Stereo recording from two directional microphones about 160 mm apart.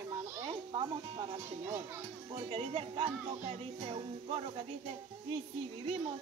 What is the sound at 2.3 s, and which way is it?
Speech, 35° right (ahead or behind).